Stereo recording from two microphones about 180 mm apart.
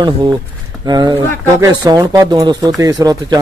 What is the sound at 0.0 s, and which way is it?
A man's voice, 25° right (ahead or behind).